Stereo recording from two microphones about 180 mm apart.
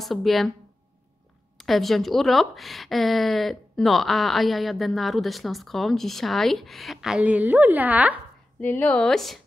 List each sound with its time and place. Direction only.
0.0 s speech: centre (ahead or behind)
1.6 s speech: centre (ahead or behind)
8.5 s speech: 10° left (ahead or behind)